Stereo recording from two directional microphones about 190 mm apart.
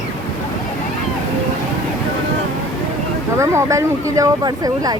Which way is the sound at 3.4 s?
15° right (ahead or behind).